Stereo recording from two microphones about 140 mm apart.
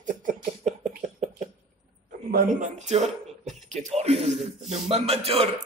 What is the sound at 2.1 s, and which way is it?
Speech, 80° right.